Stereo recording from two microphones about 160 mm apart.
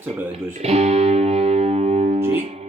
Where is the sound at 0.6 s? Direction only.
40° right (ahead or behind).